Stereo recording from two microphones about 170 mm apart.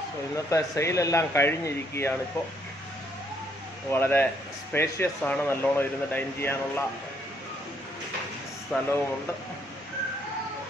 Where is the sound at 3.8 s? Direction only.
10° left (ahead or behind).